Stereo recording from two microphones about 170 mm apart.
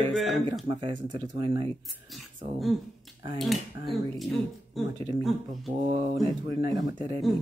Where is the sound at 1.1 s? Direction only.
30° right (ahead or behind).